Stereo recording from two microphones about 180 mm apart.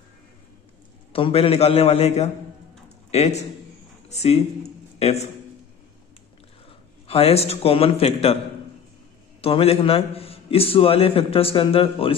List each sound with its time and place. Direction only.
1.1 s a man's voice: 30° left (ahead or behind)
7.1 s a man's voice: 35° left (ahead or behind)
9.4 s a man's voice: 35° left (ahead or behind)